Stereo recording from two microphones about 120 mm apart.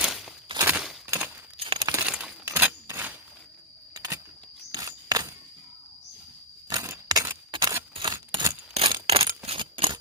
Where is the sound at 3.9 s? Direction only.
30° right (ahead or behind).